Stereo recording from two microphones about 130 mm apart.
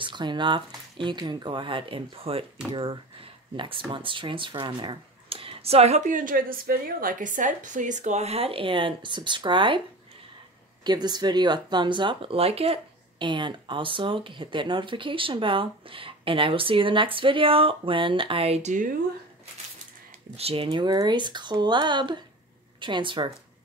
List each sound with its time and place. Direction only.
0.0 s speech: 35° right (ahead or behind)
10.8 s speech: 35° right (ahead or behind); by 18.9 s 75° right (ahead or behind)
20.3 s speech: 50° right (ahead or behind)
20.7 s speech: 35° right (ahead or behind)